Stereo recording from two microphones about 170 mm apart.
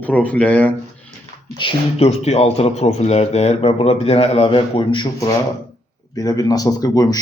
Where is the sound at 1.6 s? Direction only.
35° left (ahead or behind).